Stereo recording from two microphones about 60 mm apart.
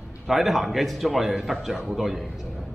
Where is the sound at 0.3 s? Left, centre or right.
Centre.